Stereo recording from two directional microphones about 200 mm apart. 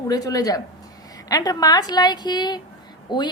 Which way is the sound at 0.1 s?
20° left (ahead or behind).